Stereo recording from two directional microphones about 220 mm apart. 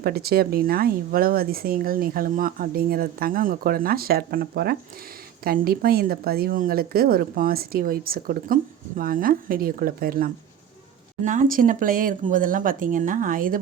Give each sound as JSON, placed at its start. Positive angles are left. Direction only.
{"t": 0.0, "sound": "speech", "side_deg": -45}